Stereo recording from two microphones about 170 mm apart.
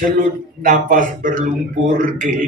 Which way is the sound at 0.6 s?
50° right (ahead or behind).